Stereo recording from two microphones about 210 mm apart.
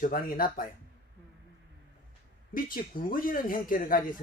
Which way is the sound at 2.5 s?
40° left (ahead or behind).